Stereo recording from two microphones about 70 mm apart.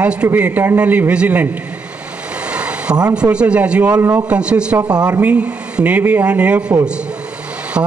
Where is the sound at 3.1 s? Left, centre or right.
Centre.